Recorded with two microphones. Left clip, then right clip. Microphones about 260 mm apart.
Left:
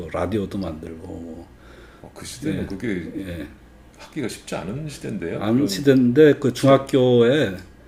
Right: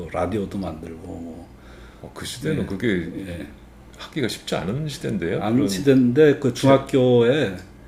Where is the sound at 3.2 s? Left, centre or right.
Left.